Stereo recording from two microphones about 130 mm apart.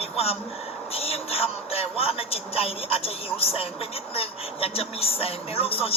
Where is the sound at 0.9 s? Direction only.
50° left (ahead or behind).